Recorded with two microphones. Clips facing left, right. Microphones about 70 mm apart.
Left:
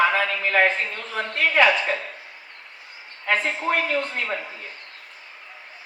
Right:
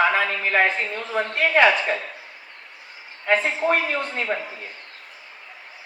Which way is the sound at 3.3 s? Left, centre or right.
Right.